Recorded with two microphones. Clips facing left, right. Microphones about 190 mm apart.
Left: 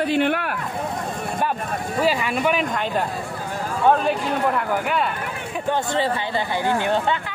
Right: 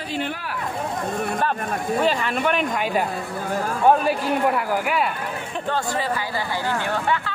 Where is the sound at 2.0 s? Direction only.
10° left (ahead or behind).